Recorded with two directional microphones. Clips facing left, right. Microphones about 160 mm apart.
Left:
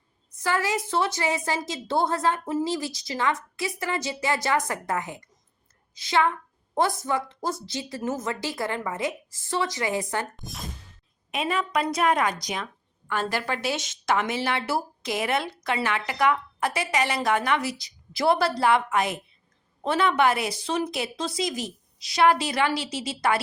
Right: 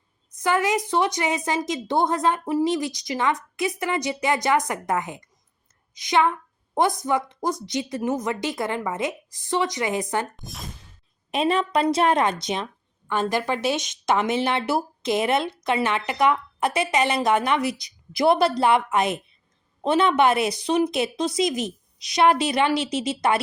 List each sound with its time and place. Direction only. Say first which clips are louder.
0.3 s speech: right 4 dB; 20° right (ahead or behind)
10.3 s speech: even; centre (ahead or behind)
11.3 s speech: right 5 dB; 30° right (ahead or behind)